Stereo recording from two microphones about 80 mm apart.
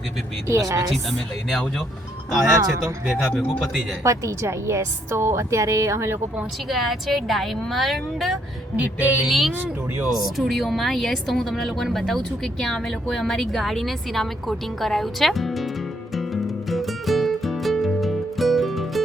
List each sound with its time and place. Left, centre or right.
0.4 s a woman's voice: right
2.3 s speech: centre
4.0 s a woman's voice: right
6.7 s speech: centre
8.7 s a sound: centre
9.2 s speech: centre
16.1 s music: centre